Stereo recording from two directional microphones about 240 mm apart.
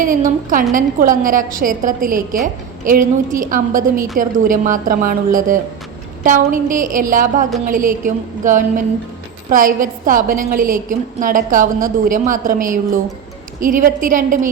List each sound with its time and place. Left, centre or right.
0.0 s a woman's voice: right